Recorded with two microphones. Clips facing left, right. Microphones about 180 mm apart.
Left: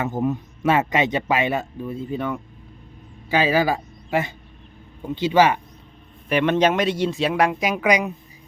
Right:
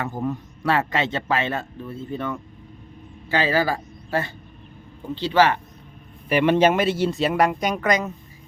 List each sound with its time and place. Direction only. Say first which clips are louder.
0.0 s a man's voice: left 4 dB; 20° left (ahead or behind)
6.2 s speech: right 1 dB; 10° right (ahead or behind); by 8.1 s 10° left (ahead or behind)